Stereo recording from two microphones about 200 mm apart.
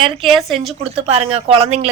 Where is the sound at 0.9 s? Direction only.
30° right (ahead or behind).